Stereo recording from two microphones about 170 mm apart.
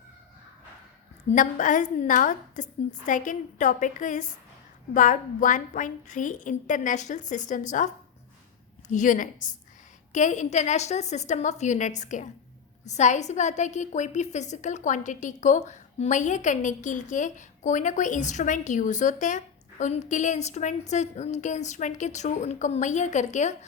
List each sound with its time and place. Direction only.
1.3 s a woman's voice: 50° left (ahead or behind)
8.9 s a woman's voice: 50° left (ahead or behind)